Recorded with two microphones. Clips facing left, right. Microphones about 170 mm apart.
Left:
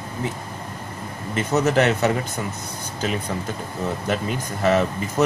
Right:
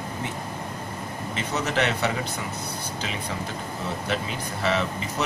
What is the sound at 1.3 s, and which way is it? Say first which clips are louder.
Speech: left 7 dB; 45° left (ahead or behind).